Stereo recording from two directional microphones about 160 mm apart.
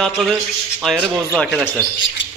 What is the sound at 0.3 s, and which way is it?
A man's voice, centre (ahead or behind).